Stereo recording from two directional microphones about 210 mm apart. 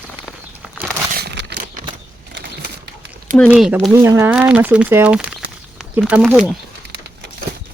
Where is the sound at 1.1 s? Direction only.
50° right (ahead or behind).